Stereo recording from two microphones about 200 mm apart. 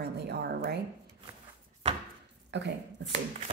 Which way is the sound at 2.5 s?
60° right (ahead or behind).